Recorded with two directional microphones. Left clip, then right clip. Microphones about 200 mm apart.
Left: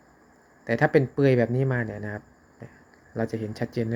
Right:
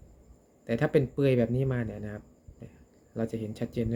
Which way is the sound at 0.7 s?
20° right (ahead or behind).